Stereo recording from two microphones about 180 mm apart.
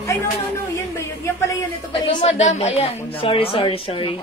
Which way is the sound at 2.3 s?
40° left (ahead or behind).